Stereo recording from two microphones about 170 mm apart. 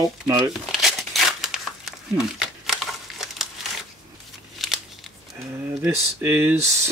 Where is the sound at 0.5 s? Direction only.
Centre (ahead or behind).